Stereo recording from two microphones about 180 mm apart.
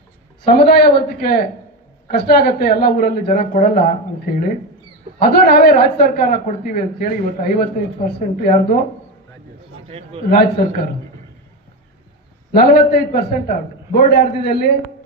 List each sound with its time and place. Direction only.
0.5 s a man's voice: 60° left (ahead or behind)
9.8 s a man's voice: 35° right (ahead or behind)
10.3 s a man's voice: 55° left (ahead or behind)
12.5 s a man's voice: 60° left (ahead or behind)